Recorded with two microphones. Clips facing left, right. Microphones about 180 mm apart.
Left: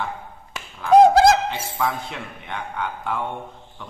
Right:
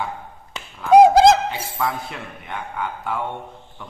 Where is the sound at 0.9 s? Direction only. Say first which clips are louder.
Right 2 dB; 10° right (ahead or behind).